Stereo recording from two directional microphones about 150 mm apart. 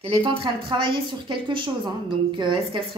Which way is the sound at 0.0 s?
35° right (ahead or behind).